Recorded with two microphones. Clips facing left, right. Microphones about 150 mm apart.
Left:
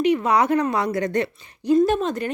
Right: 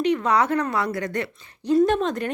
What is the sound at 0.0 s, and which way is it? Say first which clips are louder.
A woman's voice: left 2 dB; 10° left (ahead or behind).